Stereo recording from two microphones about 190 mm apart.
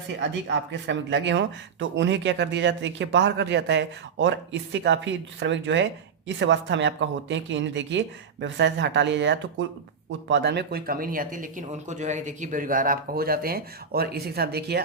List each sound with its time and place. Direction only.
0.2 s speech: 65° right (ahead or behind)